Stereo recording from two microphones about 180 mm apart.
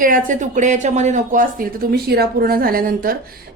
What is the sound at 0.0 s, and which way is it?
A woman's voice, 45° right (ahead or behind).